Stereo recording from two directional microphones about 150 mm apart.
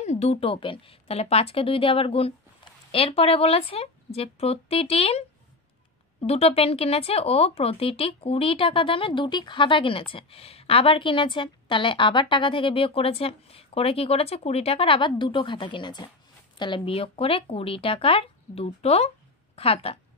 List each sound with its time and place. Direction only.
0.0 s a woman's voice: 45° left (ahead or behind)
6.2 s speech: 40° left (ahead or behind)